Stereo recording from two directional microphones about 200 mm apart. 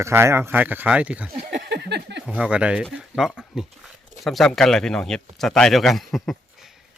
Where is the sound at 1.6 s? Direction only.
55° right (ahead or behind).